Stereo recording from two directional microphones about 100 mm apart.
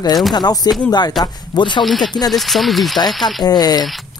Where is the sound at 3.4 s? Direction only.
40° left (ahead or behind).